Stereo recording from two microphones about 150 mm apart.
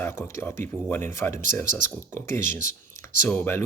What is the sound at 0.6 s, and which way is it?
Speech, 15° left (ahead or behind).